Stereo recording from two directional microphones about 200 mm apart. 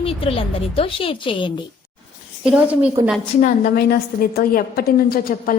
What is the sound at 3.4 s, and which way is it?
A woman's voice, 45° left (ahead or behind).